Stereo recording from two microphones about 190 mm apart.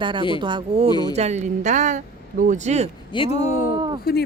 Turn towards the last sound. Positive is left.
turn(degrees=55)  # may be behind; listen again after turning